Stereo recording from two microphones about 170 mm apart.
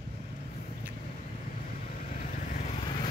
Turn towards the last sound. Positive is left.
turn(degrees=30)  # may be behind; listen again after turning